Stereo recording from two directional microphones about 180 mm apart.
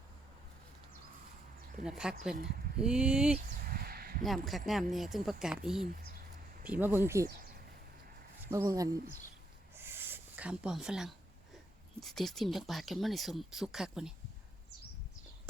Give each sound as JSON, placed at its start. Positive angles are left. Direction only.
{"t": 1.8, "sound": "speech", "side_deg": -5}
{"t": 3.7, "sound": "a sound", "side_deg": -55}
{"t": 4.2, "sound": "speech", "side_deg": 0}
{"t": 8.4, "sound": "speech", "side_deg": -15}
{"t": 9.7, "sound": "a sound", "side_deg": -10}
{"t": 11.9, "sound": "speech", "side_deg": 0}